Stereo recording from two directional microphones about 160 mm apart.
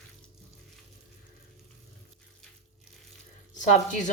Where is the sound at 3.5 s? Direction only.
50° left (ahead or behind).